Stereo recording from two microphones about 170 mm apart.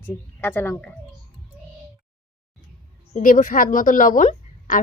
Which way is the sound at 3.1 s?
50° left (ahead or behind).